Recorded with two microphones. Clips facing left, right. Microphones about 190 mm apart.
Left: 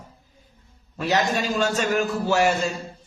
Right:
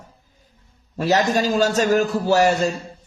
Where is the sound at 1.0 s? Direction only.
40° right (ahead or behind).